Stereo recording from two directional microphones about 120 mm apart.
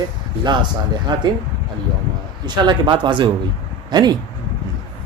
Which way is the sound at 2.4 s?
40° right (ahead or behind).